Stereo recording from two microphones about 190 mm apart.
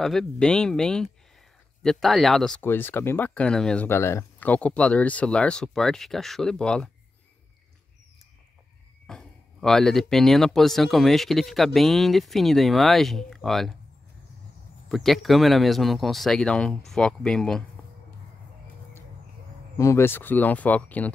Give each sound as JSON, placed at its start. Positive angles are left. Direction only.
{"t": 0.0, "sound": "speech", "side_deg": 0}
{"t": 9.0, "sound": "speech", "side_deg": 5}
{"t": 14.9, "sound": "speech", "side_deg": 0}
{"t": 19.8, "sound": "speech", "side_deg": 15}